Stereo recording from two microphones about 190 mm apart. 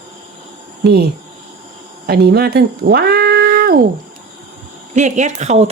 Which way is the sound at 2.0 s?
55° right (ahead or behind).